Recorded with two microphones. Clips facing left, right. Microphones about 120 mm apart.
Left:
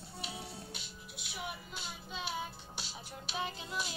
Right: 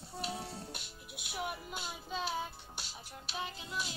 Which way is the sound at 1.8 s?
Centre (ahead or behind).